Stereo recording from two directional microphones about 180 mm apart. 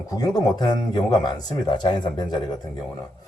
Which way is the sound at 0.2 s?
20° left (ahead or behind).